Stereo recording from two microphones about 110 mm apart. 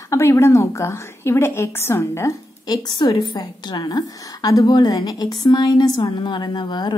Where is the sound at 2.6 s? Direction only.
40° left (ahead or behind).